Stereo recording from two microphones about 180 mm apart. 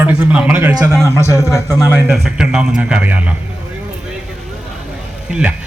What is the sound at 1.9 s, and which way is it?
A man's voice, 5° right (ahead or behind).